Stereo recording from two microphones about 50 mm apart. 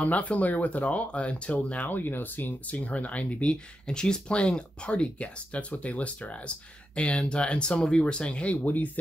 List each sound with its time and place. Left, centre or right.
0.0 s speech: left
1.9 s speech: left
3.8 s speech: centre
8.6 s speech: left